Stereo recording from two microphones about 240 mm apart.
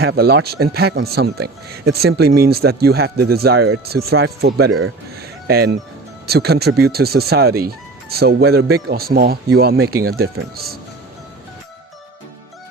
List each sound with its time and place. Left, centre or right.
0.0 s speech: right